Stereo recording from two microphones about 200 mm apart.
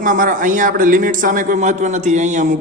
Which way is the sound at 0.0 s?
40° right (ahead or behind).